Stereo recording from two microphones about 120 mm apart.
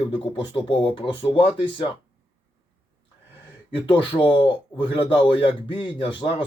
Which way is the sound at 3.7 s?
45° left (ahead or behind).